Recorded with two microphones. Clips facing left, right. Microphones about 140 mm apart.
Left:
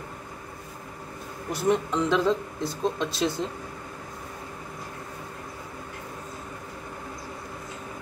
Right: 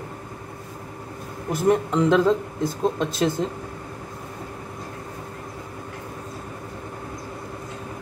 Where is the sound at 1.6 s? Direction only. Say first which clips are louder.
Right 5 dB; 50° right (ahead or behind).